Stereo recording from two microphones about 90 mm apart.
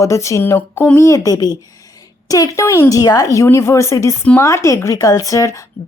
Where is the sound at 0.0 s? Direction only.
35° left (ahead or behind).